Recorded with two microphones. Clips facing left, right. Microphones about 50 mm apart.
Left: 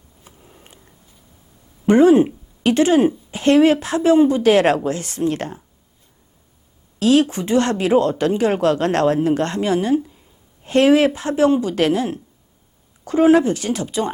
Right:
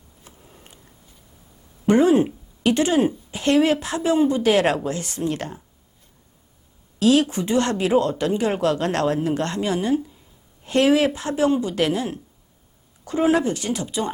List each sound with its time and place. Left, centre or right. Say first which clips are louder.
0.3 s a sound: left 3 dB; centre
1.9 s speech: left 4 dB; left
7.0 s speech: left 2 dB; left